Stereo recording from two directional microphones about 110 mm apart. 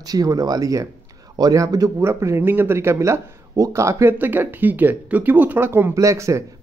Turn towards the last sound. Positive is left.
turn(degrees=-30)  # may be behind; listen again after turning